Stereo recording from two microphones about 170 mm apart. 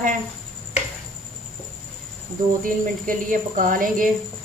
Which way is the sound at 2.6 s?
55° right (ahead or behind).